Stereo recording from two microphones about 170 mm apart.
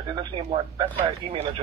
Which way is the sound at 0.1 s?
30° right (ahead or behind).